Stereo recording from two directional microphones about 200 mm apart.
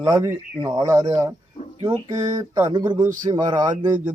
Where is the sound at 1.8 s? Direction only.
20° right (ahead or behind).